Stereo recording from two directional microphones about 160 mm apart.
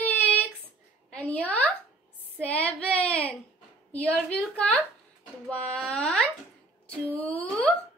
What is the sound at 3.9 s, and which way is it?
A woman's voice, 10° left (ahead or behind).